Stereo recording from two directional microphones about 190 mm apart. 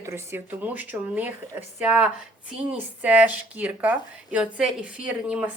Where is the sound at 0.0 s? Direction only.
15° right (ahead or behind).